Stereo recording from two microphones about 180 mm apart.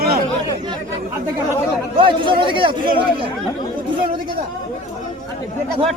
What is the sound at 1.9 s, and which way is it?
Speech, 30° right (ahead or behind).